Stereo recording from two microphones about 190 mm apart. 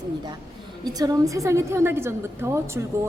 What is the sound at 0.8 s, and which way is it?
A woman's voice, 20° right (ahead or behind).